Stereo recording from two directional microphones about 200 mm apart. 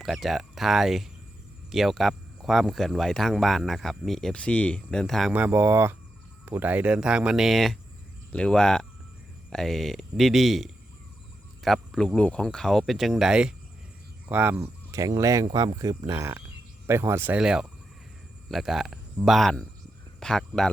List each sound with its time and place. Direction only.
0.0 s speech: centre (ahead or behind)